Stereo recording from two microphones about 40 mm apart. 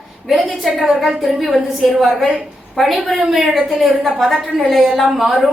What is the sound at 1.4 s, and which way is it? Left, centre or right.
A woman's voice, centre.